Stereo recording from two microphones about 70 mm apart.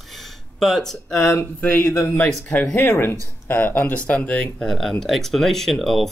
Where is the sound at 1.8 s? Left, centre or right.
Left.